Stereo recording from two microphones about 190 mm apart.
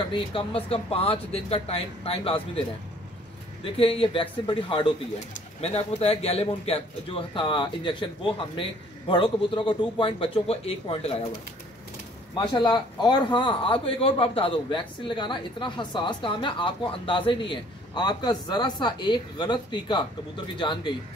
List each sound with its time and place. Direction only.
0.0 s a man's voice: 25° left (ahead or behind)
3.6 s a man's voice: 30° left (ahead or behind)
12.4 s a man's voice: 25° left (ahead or behind)